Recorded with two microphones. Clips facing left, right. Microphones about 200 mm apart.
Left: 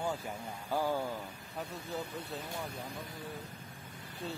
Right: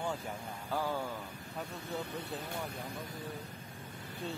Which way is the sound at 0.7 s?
10° left (ahead or behind).